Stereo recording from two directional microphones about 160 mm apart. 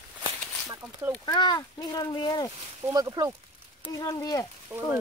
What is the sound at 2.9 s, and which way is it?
Speech, 25° right (ahead or behind).